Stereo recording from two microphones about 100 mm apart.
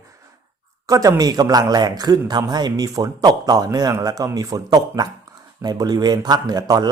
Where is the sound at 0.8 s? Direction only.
35° right (ahead or behind).